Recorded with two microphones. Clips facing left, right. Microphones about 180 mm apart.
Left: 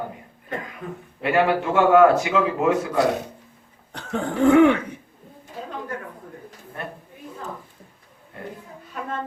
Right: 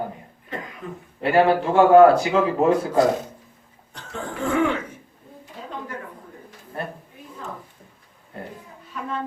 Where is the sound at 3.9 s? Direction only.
65° left (ahead or behind).